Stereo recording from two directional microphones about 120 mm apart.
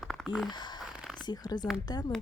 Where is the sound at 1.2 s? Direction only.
35° left (ahead or behind).